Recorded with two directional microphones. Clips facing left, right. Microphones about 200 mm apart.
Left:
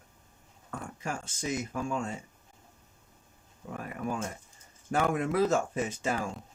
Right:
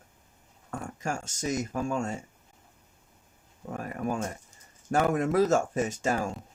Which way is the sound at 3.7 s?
45° right (ahead or behind).